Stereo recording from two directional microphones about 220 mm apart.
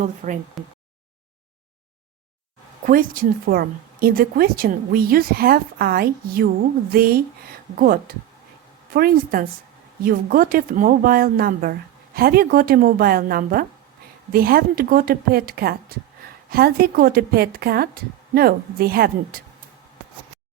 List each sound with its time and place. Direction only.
0.2 s speech: 35° right (ahead or behind)
2.8 s speech: 40° right (ahead or behind)